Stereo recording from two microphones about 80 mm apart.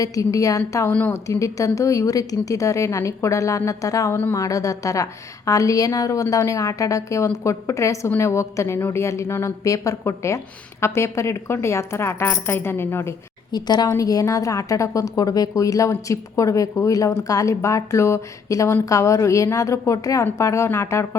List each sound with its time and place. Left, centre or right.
0.0 s a woman's voice: left
13.5 s a woman's voice: left
13.9 s a woman's voice: left